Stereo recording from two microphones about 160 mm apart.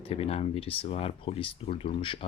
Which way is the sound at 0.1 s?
40° left (ahead or behind).